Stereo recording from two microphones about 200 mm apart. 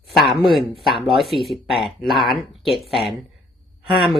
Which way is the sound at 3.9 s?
Centre (ahead or behind).